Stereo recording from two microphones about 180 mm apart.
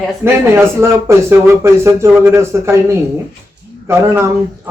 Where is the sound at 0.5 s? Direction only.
15° right (ahead or behind).